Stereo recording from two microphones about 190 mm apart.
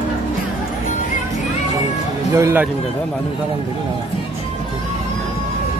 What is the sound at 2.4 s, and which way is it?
Speech, 15° right (ahead or behind).